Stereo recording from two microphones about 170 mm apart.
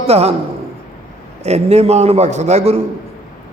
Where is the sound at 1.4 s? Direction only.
40° right (ahead or behind).